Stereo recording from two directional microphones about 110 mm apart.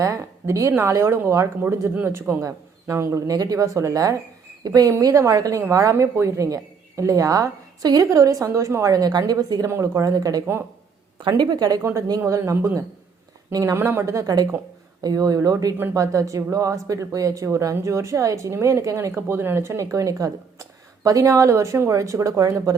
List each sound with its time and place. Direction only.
0.0 s a sound: 30° right (ahead or behind)
0.7 s a woman's voice: 25° right (ahead or behind)
9.6 s a woman's voice: 25° right (ahead or behind)
11.8 s a woman's voice: 25° right (ahead or behind)